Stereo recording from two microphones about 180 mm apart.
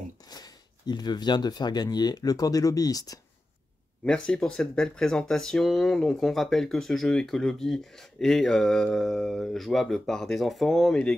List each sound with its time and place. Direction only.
0.3 s speech: 20° left (ahead or behind)
4.0 s speech: 5° left (ahead or behind)